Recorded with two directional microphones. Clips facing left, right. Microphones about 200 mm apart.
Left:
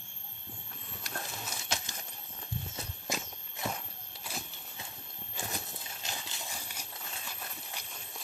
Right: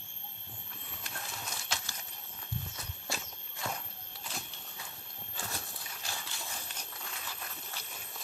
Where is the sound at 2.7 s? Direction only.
20° left (ahead or behind).